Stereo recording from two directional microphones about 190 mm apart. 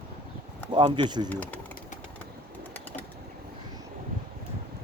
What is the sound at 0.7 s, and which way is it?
Speech, 25° right (ahead or behind).